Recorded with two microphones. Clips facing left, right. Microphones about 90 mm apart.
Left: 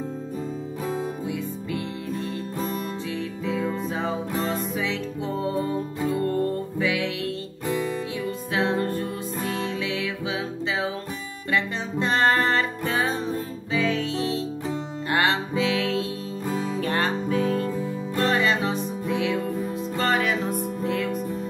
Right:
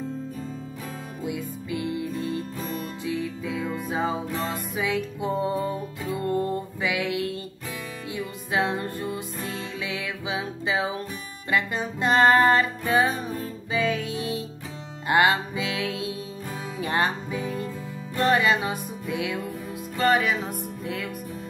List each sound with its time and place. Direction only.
1.2 s music: 15° right (ahead or behind)
4.7 s music: 10° right (ahead or behind)
8.5 s music: 15° right (ahead or behind)
20.0 s music: 5° right (ahead or behind)